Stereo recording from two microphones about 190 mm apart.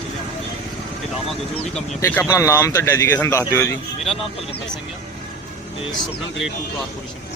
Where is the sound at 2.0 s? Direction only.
15° left (ahead or behind).